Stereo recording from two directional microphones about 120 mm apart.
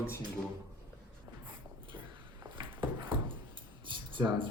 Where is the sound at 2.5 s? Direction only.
40° right (ahead or behind).